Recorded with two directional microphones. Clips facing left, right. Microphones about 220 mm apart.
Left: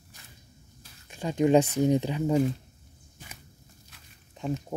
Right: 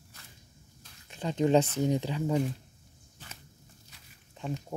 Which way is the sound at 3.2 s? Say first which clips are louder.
Left 2 dB; 15° left (ahead or behind).